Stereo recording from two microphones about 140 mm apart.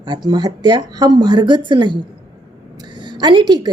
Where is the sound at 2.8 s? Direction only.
35° right (ahead or behind).